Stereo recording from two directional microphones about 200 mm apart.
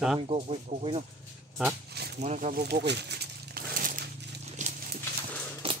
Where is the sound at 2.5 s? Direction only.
55° right (ahead or behind).